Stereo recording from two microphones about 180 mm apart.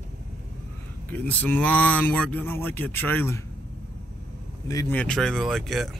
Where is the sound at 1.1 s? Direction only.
10° left (ahead or behind).